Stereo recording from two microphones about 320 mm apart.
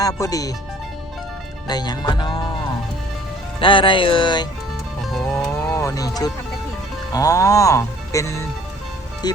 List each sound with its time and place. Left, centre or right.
0.0 s speech: centre
1.6 s speech: centre
3.6 s speech: centre
5.0 s music: centre
7.1 s speech: centre